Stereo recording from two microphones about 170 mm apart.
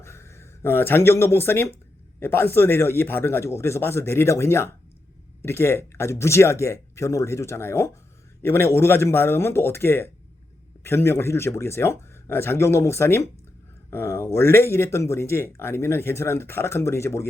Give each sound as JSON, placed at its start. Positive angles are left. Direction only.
{"t": 0.0, "sound": "speech", "side_deg": 15}